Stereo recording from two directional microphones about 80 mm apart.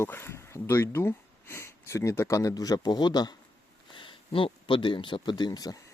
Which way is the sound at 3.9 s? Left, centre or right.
Left.